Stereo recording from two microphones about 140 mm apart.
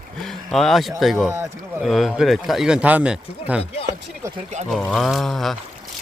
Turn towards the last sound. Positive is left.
turn(degrees=0)  # may be behind; listen again after turning